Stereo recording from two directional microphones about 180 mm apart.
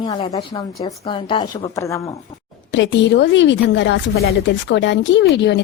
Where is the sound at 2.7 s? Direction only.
90° left.